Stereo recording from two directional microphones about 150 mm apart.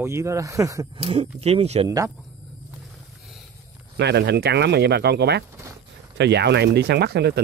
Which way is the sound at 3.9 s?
90° right.